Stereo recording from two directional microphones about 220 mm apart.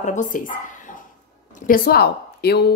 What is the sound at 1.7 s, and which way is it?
Speech, 40° left (ahead or behind).